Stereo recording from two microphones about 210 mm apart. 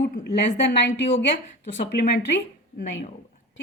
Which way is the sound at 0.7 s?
55° left (ahead or behind).